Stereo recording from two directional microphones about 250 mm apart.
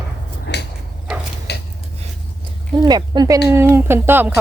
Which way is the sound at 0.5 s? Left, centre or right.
Left.